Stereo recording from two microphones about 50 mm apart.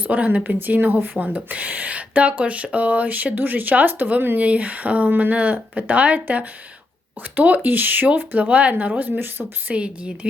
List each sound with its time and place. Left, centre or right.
0.0 s speech: right
1.2 s speech: right
9.1 s speech: right
9.6 s speech: right